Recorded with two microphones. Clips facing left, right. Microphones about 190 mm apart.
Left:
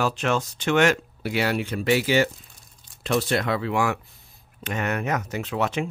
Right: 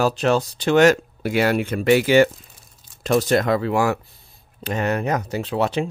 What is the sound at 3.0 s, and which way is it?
Speech, 40° right (ahead or behind).